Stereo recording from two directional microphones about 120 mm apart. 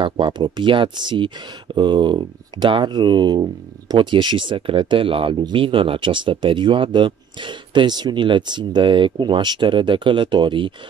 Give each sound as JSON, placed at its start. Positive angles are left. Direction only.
{"t": 0.0, "sound": "speech", "side_deg": -45}